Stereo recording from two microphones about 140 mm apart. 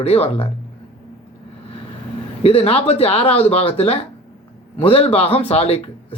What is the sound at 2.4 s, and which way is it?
Speech, 45° left (ahead or behind).